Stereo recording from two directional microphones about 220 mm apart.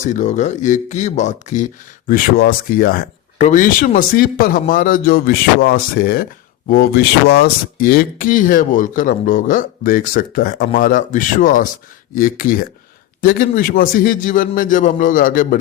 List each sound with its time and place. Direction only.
0.0 s speech: 35° left (ahead or behind)